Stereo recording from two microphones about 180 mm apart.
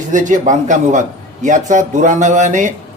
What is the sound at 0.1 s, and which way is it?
A man's voice, 45° right (ahead or behind).